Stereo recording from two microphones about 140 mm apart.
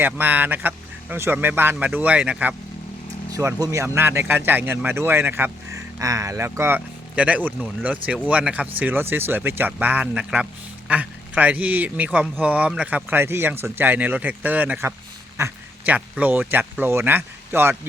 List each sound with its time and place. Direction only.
0.0 s speech: 15° right (ahead or behind)
3.3 s speech: 25° right (ahead or behind)
15.4 s a sound: 20° right (ahead or behind)
16.0 s speech: 10° right (ahead or behind)